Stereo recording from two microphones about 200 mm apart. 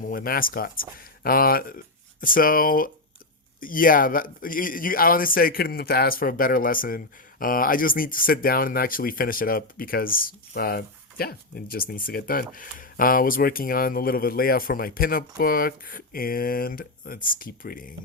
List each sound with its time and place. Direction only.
0.0 s speech: 45° left (ahead or behind)